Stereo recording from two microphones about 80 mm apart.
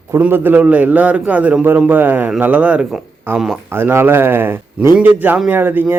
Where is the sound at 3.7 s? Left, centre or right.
Right.